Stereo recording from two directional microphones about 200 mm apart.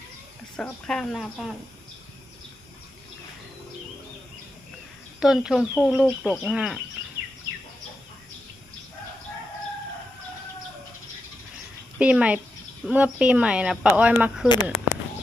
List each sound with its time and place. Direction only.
0.5 s speech: 5° left (ahead or behind)
5.2 s speech: centre (ahead or behind)
11.9 s a woman's voice: 5° right (ahead or behind)
14.4 s speech: 20° left (ahead or behind)